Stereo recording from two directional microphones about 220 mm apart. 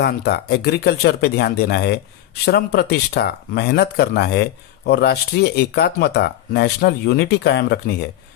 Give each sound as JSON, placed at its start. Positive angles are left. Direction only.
{"t": 0.0, "sound": "speech", "side_deg": 50}